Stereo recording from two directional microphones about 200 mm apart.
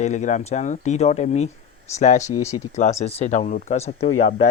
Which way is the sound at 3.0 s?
30° left (ahead or behind).